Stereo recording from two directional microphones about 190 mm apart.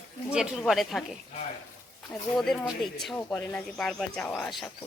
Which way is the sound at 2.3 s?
5° left (ahead or behind).